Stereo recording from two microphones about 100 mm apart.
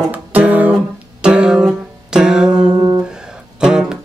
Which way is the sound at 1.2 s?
10° right (ahead or behind).